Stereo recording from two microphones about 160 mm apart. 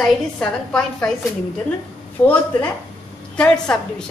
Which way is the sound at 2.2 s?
20° left (ahead or behind).